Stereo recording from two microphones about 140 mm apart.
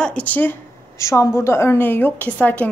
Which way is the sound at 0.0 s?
10° left (ahead or behind).